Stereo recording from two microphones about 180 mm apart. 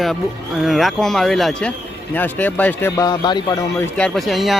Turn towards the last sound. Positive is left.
turn(degrees=0)  # may be behind; listen again after turning